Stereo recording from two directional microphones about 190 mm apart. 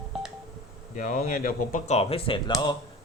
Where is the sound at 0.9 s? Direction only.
45° left (ahead or behind); by 2.5 s 30° left (ahead or behind).